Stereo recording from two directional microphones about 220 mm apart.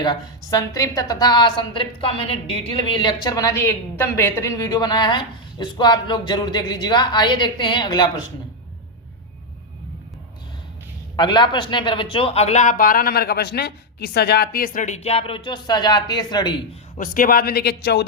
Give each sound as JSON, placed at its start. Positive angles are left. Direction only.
{"t": 0.0, "sound": "a woman's voice", "side_deg": 20}
{"t": 11.2, "sound": "a woman's voice", "side_deg": 20}
{"t": 17.0, "sound": "speech", "side_deg": 40}